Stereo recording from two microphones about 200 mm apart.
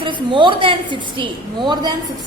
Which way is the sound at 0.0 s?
25° right (ahead or behind).